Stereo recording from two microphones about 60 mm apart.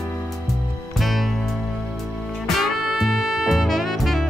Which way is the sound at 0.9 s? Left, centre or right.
Centre.